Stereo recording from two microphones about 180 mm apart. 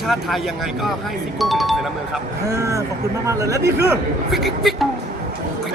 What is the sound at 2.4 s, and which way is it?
Speech, 15° right (ahead or behind).